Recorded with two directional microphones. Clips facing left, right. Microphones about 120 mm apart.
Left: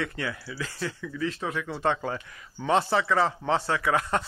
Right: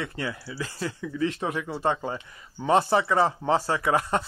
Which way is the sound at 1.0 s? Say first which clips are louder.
Right 5 dB; 25° right (ahead or behind).